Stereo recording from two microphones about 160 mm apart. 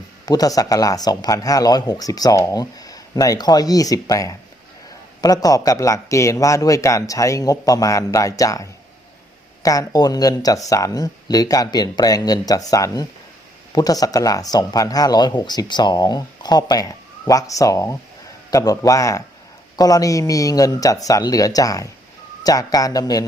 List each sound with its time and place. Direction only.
0.3 s speech: 25° left (ahead or behind)